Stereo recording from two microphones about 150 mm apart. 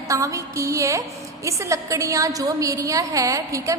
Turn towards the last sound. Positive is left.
turn(degrees=-20)  # may be behind; listen again after turning